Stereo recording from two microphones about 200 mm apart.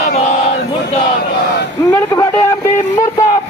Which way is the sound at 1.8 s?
15° left (ahead or behind).